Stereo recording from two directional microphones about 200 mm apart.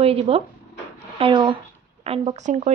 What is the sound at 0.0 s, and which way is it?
Speech, 30° right (ahead or behind).